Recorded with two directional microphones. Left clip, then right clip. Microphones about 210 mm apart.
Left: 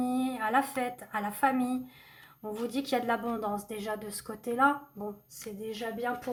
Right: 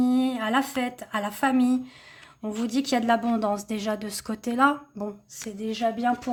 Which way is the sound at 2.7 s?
45° right (ahead or behind).